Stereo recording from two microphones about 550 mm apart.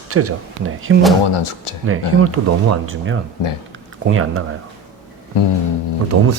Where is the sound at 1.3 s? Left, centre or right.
Left.